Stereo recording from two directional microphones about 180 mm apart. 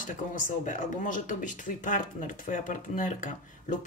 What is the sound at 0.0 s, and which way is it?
Speech, 45° left (ahead or behind).